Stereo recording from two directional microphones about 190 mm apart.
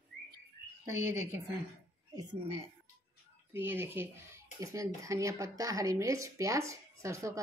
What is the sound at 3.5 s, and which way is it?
Speech, 10° right (ahead or behind).